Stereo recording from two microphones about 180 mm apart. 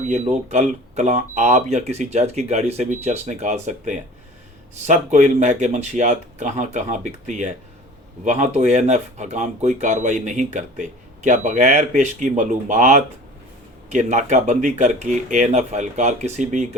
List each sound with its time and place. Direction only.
0.1 s speech: 40° right (ahead or behind)